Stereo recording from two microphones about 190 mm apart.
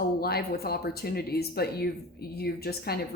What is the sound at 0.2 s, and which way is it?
Speech, 55° left (ahead or behind).